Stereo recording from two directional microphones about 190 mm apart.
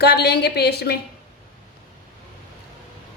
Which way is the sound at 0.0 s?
60° left (ahead or behind).